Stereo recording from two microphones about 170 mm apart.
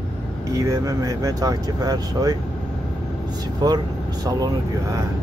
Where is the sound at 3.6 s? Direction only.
25° right (ahead or behind).